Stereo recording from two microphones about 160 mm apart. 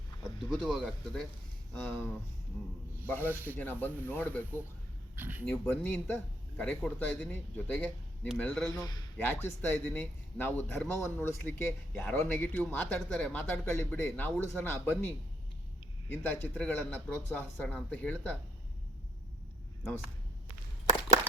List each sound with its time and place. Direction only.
0.2 s speech: 5° left (ahead or behind)
3.2 s speech: 10° right (ahead or behind)
3.6 s speech: 10° left (ahead or behind)
5.1 s speech: 10° right (ahead or behind)
5.5 s speech: 10° left (ahead or behind)
8.8 s a man's voice: 25° left (ahead or behind)
9.1 s speech: 10° left (ahead or behind)